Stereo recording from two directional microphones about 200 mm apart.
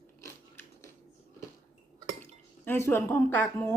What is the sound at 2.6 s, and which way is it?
Speech, 10° left (ahead or behind).